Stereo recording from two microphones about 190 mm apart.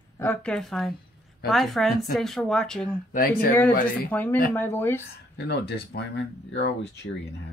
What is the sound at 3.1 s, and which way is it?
Speech, 50° left (ahead or behind).